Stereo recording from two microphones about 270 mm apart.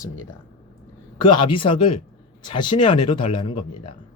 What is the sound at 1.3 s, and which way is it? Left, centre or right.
Speech, centre.